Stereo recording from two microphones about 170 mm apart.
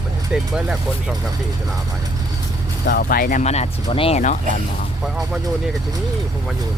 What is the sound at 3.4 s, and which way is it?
Speech, 40° left (ahead or behind).